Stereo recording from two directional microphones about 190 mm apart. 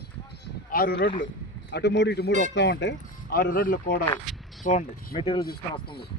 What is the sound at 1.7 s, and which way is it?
Speech, 65° left (ahead or behind).